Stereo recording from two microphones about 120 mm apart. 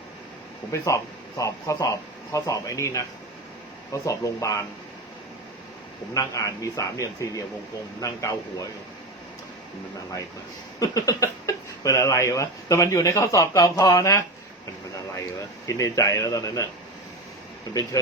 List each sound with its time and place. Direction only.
0.7 s speech: 25° left (ahead or behind)
6.1 s speech: 30° left (ahead or behind)
10.8 s speech: 30° left (ahead or behind)
17.9 s speech: 25° left (ahead or behind)